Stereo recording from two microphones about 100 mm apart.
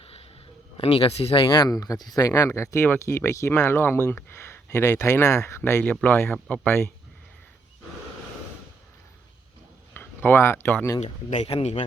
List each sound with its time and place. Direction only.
0.0 s a sound: 80° left
0.8 s speech: 70° left (ahead or behind); by 5.8 s 30° left (ahead or behind)
5.8 s speech: 15° left (ahead or behind)
9.9 s speech: 20° left (ahead or behind)
11.3 s speech: 85° left